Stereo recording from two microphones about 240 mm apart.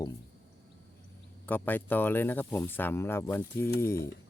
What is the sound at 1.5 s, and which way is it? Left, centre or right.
Speech, centre.